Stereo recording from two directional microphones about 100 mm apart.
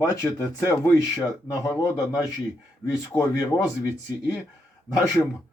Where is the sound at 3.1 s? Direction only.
15° left (ahead or behind).